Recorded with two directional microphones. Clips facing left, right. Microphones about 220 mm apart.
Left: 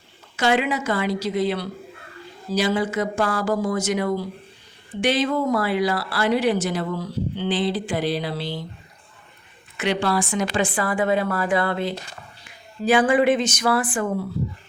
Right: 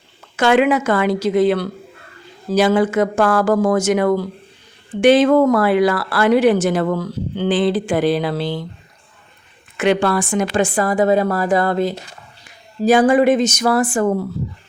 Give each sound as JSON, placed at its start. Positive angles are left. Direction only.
{"t": 0.3, "sound": "speech", "side_deg": -50}
{"t": 9.7, "sound": "speech", "side_deg": -50}